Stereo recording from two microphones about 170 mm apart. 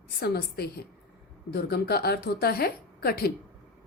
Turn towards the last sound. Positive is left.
turn(degrees=60)  # may be behind; listen again after turning